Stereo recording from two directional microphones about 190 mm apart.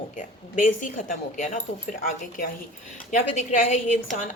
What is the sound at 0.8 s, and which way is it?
A woman's voice, 40° left (ahead or behind).